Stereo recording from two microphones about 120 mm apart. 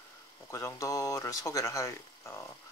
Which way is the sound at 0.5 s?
25° left (ahead or behind).